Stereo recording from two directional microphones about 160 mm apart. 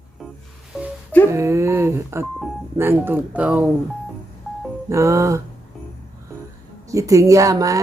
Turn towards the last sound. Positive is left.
turn(degrees=-20)  # may be behind; listen again after turning